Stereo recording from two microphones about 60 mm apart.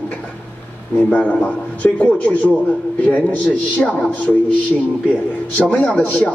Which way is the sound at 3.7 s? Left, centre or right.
Left.